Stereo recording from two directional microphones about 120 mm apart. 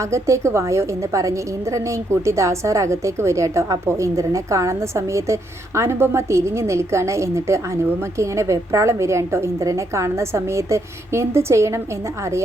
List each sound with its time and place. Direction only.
0.0 s a woman's voice: 25° right (ahead or behind)